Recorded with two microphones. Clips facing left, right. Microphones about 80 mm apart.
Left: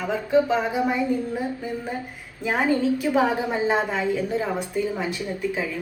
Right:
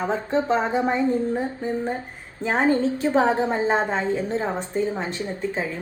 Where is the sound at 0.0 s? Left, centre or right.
Right.